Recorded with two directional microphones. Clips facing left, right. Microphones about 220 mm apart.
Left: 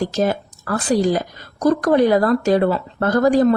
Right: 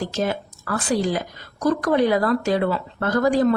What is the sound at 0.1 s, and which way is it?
A woman's voice, 40° left (ahead or behind).